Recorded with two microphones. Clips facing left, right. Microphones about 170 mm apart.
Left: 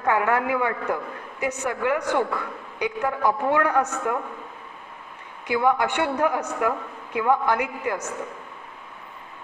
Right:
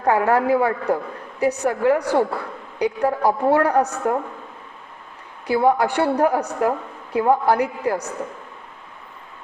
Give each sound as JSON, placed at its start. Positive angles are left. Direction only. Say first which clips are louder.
{"t": 0.0, "sound": "a woman's voice", "louder": "right 4 dB", "side_deg": -35}
{"t": 5.5, "sound": "a woman's voice", "louder": "right 4 dB", "side_deg": -35}